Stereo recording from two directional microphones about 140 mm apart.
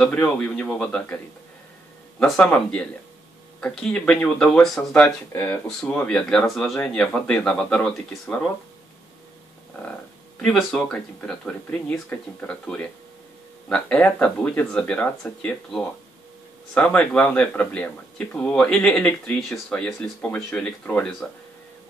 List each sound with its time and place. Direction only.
0.4 s speech: 5° left (ahead or behind)
10.4 s speech: 5° left (ahead or behind)